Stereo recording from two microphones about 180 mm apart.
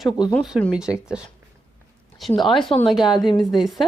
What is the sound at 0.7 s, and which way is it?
Speech, 5° right (ahead or behind).